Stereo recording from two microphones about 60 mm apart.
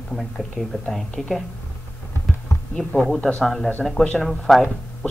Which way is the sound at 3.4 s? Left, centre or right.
Centre.